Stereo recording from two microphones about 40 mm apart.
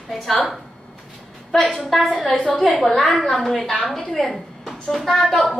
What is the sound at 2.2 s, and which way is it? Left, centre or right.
Speech, left.